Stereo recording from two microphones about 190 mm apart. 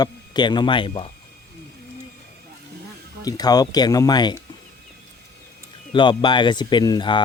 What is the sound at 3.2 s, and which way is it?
Speech, 20° left (ahead or behind).